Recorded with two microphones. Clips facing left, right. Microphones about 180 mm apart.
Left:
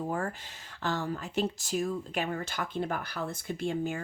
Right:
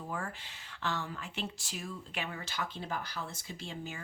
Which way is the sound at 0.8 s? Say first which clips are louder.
Left 5 dB; 40° left (ahead or behind).